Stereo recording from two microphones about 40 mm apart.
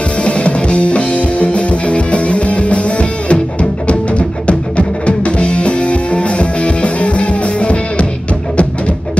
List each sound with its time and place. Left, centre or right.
0.2 s music: left